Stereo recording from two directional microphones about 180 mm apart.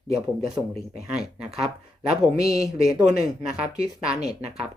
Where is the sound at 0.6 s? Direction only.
15° right (ahead or behind).